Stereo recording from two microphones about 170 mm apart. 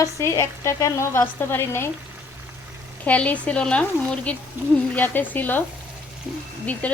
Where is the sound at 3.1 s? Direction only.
10° left (ahead or behind).